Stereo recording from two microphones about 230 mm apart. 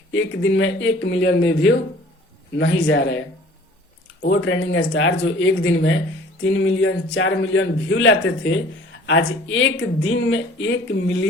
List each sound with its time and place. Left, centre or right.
0.1 s speech: left
4.2 s speech: left